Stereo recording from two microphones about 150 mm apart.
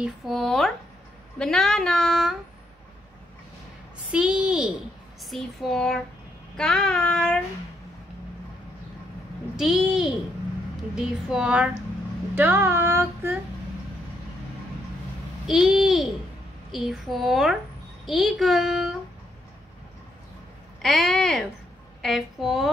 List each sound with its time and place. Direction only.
0.0 s speech: centre (ahead or behind)
4.1 s female singing: 5° right (ahead or behind)
5.2 s speech: centre (ahead or behind)
9.6 s speech: 5° right (ahead or behind)
12.4 s female singing: 15° right (ahead or behind)
15.4 s speech: centre (ahead or behind)
20.8 s speech: centre (ahead or behind)